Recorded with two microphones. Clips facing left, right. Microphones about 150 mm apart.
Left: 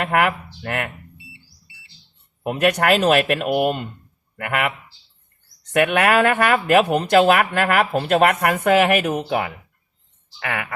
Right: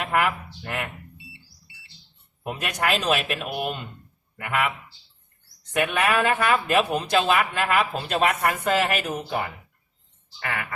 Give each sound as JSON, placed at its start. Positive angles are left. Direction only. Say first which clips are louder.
{"t": 0.0, "sound": "speech", "louder": "left 4 dB", "side_deg": 65}
{"t": 2.4, "sound": "speech", "louder": "left 9 dB", "side_deg": 65}
{"t": 5.7, "sound": "speech", "louder": "left 6 dB", "side_deg": 65}